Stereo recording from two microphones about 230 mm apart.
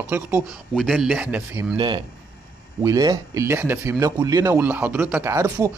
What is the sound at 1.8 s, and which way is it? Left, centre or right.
Speech, right.